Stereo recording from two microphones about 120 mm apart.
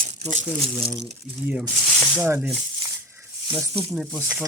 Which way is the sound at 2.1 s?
15° right (ahead or behind).